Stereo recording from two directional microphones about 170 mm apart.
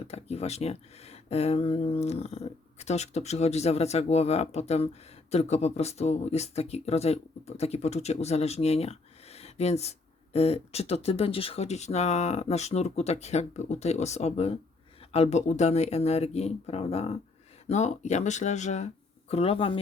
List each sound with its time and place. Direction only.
0.0 s speech: 40° left (ahead or behind)